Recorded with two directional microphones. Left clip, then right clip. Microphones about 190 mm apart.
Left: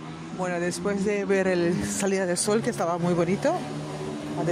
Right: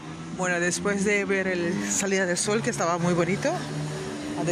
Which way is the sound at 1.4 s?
20° left (ahead or behind).